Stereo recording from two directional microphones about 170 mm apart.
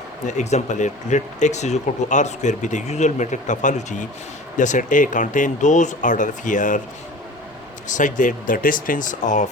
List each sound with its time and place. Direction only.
0.3 s speech: 45° left (ahead or behind)
7.9 s speech: 50° left (ahead or behind)